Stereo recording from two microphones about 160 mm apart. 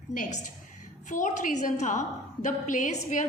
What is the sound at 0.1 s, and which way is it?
A woman's voice, 50° left (ahead or behind).